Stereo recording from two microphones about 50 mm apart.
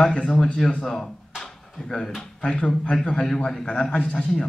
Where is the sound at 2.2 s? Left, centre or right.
Centre.